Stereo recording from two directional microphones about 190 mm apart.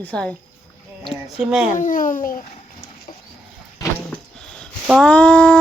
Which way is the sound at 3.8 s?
5° left (ahead or behind).